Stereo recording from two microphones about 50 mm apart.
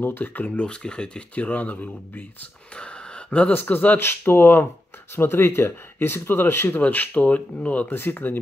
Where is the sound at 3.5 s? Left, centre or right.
Left.